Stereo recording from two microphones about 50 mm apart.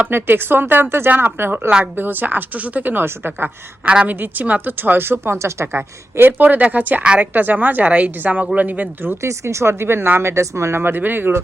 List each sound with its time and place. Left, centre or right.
0.1 s speech: right
4.8 s speech: right
5.4 s a woman's voice: right
5.7 s speech: right
7.0 s a woman's voice: right
7.3 s a woman's voice: right
9.2 s speech: right
10.2 s speech: right
10.8 s speech: right